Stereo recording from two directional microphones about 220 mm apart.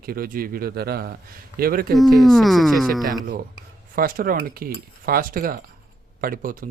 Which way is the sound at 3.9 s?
40° right (ahead or behind).